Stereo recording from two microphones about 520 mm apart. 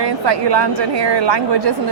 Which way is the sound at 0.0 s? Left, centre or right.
Right.